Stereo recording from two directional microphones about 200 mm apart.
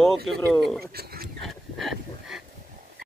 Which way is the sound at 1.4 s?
Centre (ahead or behind).